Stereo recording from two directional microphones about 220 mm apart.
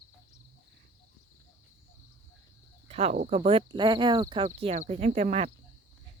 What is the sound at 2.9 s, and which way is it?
Speech, 35° right (ahead or behind).